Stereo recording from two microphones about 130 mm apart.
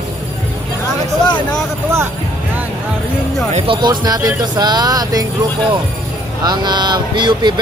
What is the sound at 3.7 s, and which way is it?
Speech, 35° right (ahead or behind).